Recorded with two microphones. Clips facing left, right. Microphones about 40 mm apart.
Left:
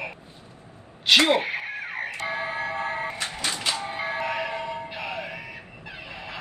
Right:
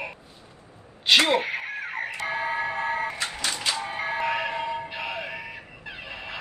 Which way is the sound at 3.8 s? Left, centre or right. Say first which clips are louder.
Even; right.